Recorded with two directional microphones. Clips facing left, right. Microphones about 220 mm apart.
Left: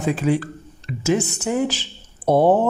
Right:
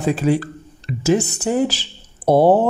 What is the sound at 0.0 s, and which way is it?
Speech, 35° right (ahead or behind).